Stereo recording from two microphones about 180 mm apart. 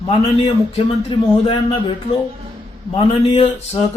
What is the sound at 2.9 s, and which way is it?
Speech, 30° left (ahead or behind).